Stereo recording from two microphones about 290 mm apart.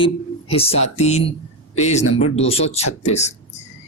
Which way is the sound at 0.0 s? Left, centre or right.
Centre.